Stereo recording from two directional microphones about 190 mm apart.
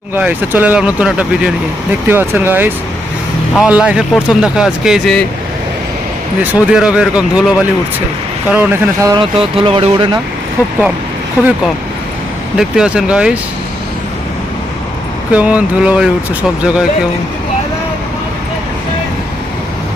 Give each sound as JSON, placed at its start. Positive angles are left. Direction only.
{"t": 0.2, "sound": "speech", "side_deg": -10}
{"t": 6.4, "sound": "speech", "side_deg": -5}
{"t": 8.5, "sound": "speech", "side_deg": -15}
{"t": 9.3, "sound": "speech", "side_deg": -30}
{"t": 12.5, "sound": "speech", "side_deg": -5}
{"t": 15.3, "sound": "speech", "side_deg": -5}